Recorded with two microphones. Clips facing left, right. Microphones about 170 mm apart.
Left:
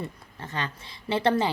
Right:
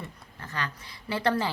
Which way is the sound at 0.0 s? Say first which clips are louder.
Left 5 dB; 25° left (ahead or behind).